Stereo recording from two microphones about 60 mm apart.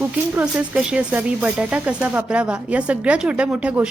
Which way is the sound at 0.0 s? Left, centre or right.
Right.